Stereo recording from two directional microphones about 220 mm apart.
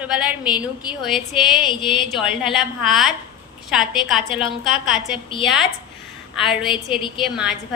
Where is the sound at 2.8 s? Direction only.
Centre (ahead or behind).